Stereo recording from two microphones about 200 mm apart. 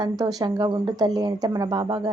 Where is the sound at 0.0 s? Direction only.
20° right (ahead or behind).